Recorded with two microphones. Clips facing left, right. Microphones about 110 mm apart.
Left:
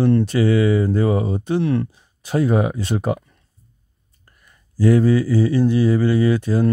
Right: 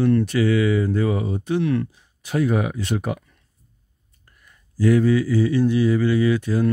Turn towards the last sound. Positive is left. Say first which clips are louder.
# left 2 dB
turn(degrees=35)  # may be behind; listen again after turning